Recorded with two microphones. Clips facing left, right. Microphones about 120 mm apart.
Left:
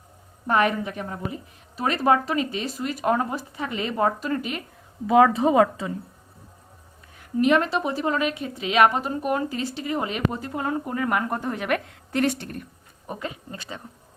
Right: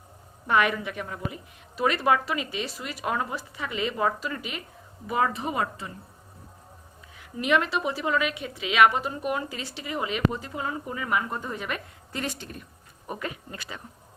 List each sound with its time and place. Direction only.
0.4 s a woman's voice: 40° left (ahead or behind)
5.0 s a woman's voice: 90° left
7.2 s a woman's voice: 40° left (ahead or behind); by 12.6 s 60° left (ahead or behind)
13.1 s speech: 25° left (ahead or behind)
13.6 s a woman's voice: 35° left (ahead or behind)